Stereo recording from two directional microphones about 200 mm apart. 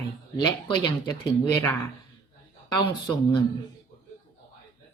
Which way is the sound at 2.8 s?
25° left (ahead or behind).